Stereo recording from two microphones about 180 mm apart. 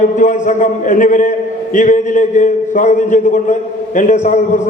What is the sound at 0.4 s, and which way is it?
A man's voice, 45° left (ahead or behind).